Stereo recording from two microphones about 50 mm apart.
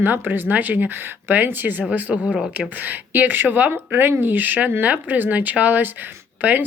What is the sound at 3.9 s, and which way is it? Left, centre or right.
A woman's voice, right.